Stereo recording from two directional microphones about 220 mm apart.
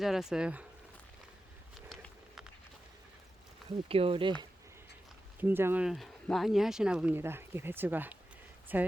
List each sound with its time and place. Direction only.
0.0 s speech: centre (ahead or behind)
1.9 s walk: centre (ahead or behind)
3.8 s speech: 25° right (ahead or behind)
5.4 s speech: 10° right (ahead or behind)